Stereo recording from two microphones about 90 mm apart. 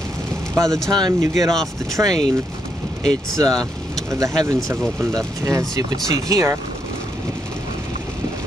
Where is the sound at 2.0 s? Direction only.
20° right (ahead or behind).